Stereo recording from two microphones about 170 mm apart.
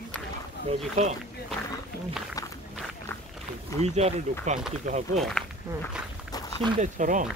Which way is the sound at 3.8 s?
40° right (ahead or behind).